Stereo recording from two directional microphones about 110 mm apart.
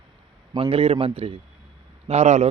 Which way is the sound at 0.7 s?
65° right (ahead or behind).